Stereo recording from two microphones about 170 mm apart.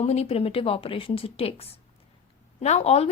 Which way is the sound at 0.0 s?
40° left (ahead or behind).